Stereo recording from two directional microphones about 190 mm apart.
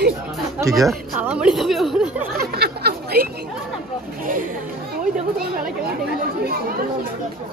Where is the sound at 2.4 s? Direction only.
55° right (ahead or behind).